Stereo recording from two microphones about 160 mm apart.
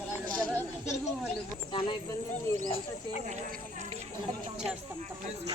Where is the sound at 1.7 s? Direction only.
30° left (ahead or behind).